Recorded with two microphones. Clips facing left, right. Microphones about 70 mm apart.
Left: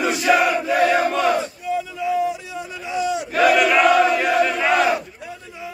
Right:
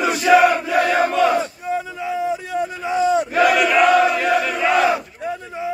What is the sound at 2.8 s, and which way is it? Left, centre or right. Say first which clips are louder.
Battle cry: right 5 dB; right.